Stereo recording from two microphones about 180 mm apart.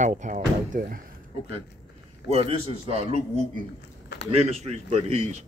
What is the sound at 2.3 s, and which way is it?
Speech, 35° right (ahead or behind).